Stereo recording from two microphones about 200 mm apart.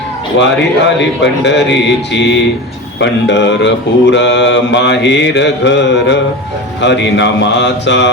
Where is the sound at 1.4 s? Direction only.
60° left (ahead or behind).